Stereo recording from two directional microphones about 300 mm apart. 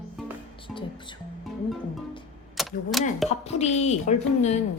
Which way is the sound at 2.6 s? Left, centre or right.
Centre.